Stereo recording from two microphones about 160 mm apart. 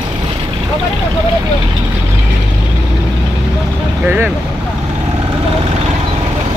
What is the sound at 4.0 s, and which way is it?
Speech, 10° right (ahead or behind).